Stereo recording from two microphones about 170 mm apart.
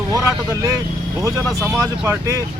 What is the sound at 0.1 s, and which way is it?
Speech, 20° right (ahead or behind).